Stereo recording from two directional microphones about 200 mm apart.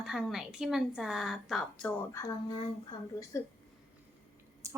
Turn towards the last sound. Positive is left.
turn(degrees=-15)  # may be behind; listen again after turning